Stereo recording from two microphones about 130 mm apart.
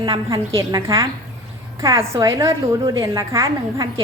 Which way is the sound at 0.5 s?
25° right (ahead or behind).